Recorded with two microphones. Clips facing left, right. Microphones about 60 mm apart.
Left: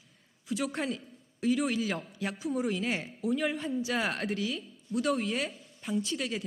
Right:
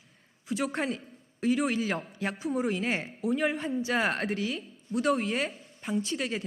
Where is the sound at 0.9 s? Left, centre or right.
Right.